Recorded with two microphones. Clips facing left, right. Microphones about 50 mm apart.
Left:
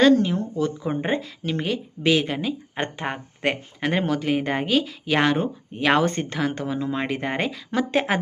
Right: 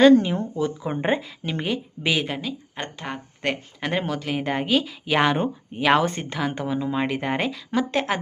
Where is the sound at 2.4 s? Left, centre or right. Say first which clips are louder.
Left 5 dB; centre.